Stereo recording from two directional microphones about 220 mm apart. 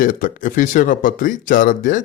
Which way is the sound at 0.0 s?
40° left (ahead or behind).